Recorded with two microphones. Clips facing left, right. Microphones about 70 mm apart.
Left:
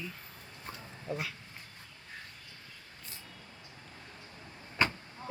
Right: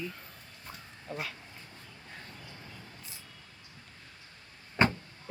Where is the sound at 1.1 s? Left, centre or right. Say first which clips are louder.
Left 1 dB; centre.